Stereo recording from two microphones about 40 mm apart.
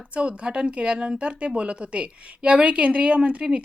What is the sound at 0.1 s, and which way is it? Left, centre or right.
A woman's voice, right.